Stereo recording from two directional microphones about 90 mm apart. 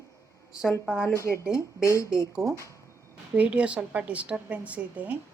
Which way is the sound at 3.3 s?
15° right (ahead or behind).